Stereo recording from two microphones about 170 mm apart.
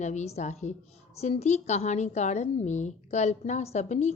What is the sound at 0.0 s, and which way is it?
A woman's voice, 45° left (ahead or behind).